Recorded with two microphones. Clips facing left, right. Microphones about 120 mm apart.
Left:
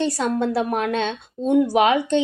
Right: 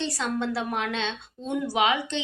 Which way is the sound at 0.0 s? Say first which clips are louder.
Left 7 dB; 45° left (ahead or behind).